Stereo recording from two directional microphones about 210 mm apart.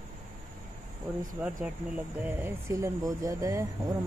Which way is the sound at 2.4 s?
15° right (ahead or behind).